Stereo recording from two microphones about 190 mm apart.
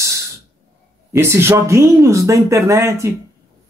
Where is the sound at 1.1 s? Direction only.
15° right (ahead or behind).